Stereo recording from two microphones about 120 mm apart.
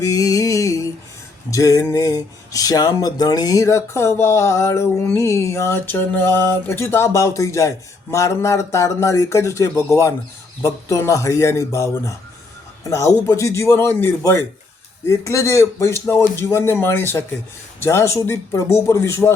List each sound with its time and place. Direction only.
0.0 s music: 25° left (ahead or behind)
1.5 s speech: 30° left (ahead or behind)